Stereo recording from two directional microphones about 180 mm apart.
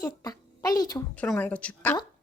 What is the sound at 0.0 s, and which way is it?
A woman's voice, 20° left (ahead or behind).